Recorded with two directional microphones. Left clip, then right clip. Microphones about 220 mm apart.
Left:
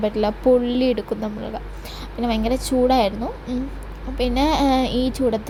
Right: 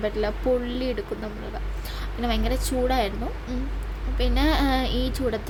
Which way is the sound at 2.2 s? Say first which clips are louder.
Left 5 dB; 10° left (ahead or behind).